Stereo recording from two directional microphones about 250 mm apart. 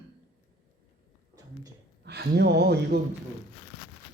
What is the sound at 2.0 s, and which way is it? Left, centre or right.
Speech, right.